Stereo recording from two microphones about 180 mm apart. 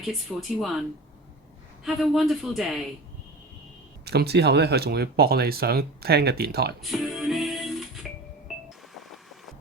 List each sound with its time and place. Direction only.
0.0 s speech: centre (ahead or behind)
1.8 s speech: centre (ahead or behind)
4.0 s speech: 65° right (ahead or behind)
6.8 s music: centre (ahead or behind)